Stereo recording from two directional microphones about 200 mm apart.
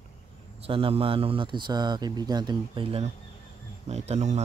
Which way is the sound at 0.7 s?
25° right (ahead or behind).